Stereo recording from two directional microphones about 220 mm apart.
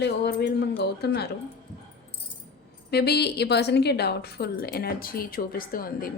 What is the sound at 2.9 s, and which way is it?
A woman's voice, 45° left (ahead or behind).